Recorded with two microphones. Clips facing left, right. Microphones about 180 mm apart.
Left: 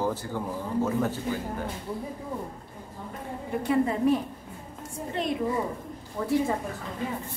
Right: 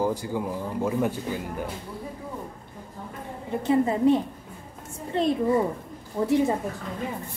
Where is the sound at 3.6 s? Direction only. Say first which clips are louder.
Right 3 dB; 25° right (ahead or behind).